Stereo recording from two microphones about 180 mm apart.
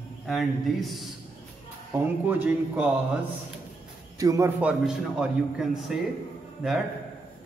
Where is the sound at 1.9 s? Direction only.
10° right (ahead or behind).